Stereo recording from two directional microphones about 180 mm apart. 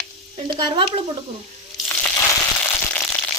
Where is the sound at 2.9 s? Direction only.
10° left (ahead or behind).